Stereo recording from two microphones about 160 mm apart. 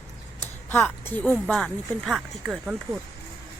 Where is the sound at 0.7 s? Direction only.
10° left (ahead or behind).